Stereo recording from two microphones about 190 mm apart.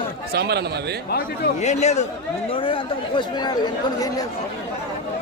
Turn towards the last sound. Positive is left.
turn(degrees=20)  # may be behind; listen again after turning